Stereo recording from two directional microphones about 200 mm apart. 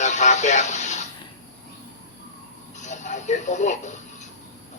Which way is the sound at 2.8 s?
35° left (ahead or behind).